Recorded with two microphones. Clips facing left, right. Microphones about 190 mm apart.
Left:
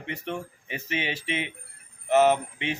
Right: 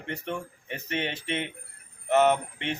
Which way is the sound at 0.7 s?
90° left.